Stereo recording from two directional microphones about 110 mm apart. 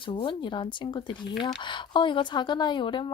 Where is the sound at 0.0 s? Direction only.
50° left (ahead or behind).